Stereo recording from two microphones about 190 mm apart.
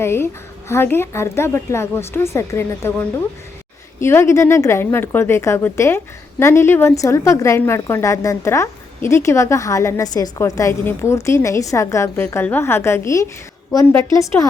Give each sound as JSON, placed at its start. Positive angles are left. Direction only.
{"t": 0.0, "sound": "a woman's voice", "side_deg": 15}